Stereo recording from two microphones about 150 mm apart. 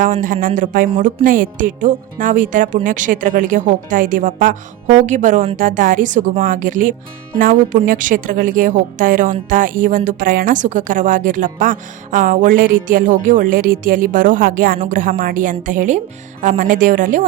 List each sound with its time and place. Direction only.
0.0 s a woman's voice: 60° right (ahead or behind)